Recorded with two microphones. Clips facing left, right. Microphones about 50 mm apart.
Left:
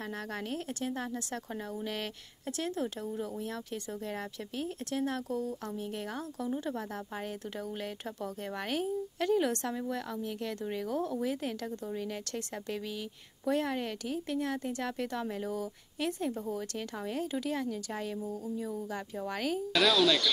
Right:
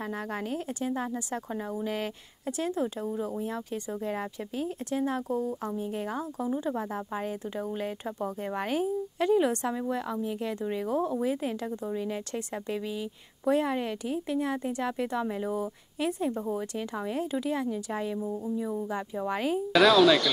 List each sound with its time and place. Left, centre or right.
0.7 s a woman's voice: centre
13.5 s a woman's voice: centre
19.7 s speech: centre